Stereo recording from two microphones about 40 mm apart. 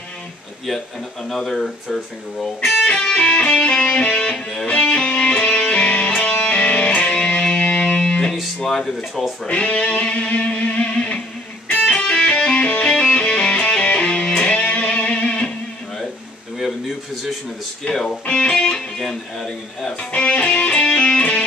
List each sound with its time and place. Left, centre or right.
1.3 s speech: centre
2.8 s music: left
8.6 s speech: centre
9.5 s music: left
11.7 s music: left
12.0 s music: left
12.5 s music: left
17.8 s speech: centre
18.3 s music: left
18.9 s speech: centre
20.1 s music: left